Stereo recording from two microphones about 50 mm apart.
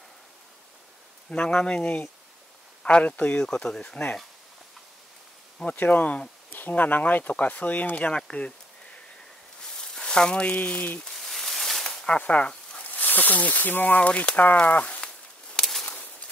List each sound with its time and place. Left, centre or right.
1.3 s speech: centre
5.7 s speech: left
8.3 s insect: left
9.6 s speech: centre; by 11.1 s left
11.1 s a sound: centre
11.8 s a sound: centre
12.8 s speech: left
13.9 s speech: left
15.5 s a sound: centre